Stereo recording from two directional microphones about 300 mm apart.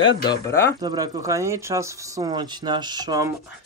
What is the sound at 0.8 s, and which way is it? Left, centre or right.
Speech, centre.